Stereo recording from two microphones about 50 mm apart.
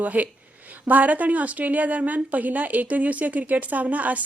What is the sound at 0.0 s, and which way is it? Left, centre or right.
A woman's voice, right.